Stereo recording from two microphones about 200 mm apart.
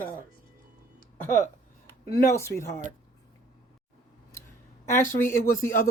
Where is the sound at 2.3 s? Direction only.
15° left (ahead or behind).